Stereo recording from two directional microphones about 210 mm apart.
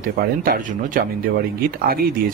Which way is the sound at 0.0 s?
45° right (ahead or behind).